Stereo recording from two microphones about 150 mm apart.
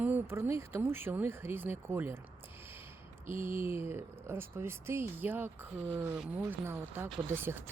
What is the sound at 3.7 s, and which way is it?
Speech, 15° right (ahead or behind).